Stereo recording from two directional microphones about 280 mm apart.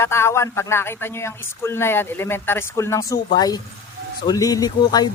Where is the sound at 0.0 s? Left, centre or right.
Centre.